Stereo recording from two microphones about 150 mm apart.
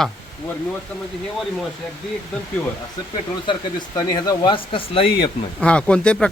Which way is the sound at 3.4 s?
30° left (ahead or behind).